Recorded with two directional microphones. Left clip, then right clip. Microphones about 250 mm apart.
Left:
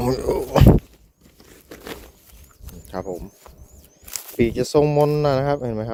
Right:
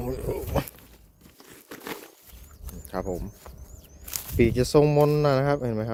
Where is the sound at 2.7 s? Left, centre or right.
Centre.